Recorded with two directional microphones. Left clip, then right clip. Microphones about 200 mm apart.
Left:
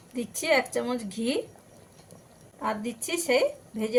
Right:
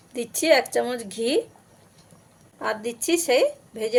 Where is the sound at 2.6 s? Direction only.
50° right (ahead or behind).